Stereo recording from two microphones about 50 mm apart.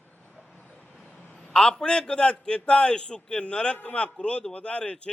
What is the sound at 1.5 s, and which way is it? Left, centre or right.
A man's voice, centre.